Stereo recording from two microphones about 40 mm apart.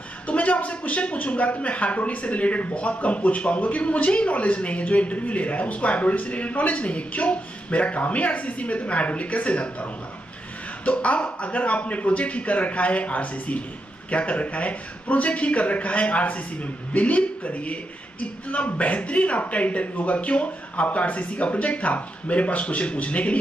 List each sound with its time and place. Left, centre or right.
0.3 s a man's voice: left
10.9 s a man's voice: left